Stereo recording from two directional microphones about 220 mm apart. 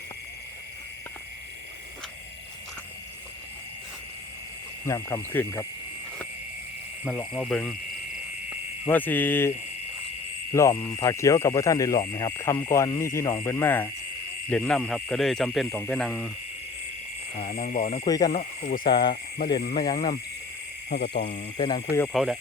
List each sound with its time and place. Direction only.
4.9 s speech: 15° left (ahead or behind)
7.0 s speech: 5° left (ahead or behind)
8.9 s speech: 10° left (ahead or behind)
10.5 s speech: 10° left (ahead or behind)
17.3 s speech: 35° left (ahead or behind)
18.0 s speech: 15° left (ahead or behind)
18.3 s speech: 35° left (ahead or behind)
18.9 s speech: 20° left (ahead or behind)
21.2 s speech: 35° left (ahead or behind)
21.6 s speech: 20° left (ahead or behind)
22.1 s speech: centre (ahead or behind)